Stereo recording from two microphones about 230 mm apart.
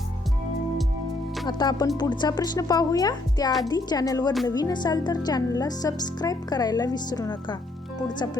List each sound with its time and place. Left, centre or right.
1.5 s speech: centre